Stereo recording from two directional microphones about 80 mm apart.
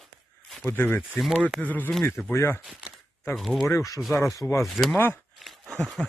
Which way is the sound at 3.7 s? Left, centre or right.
Left.